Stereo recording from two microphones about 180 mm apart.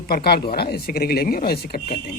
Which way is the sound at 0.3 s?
60° left (ahead or behind).